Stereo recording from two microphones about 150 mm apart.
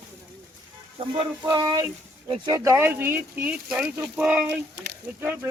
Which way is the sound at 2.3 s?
25° right (ahead or behind).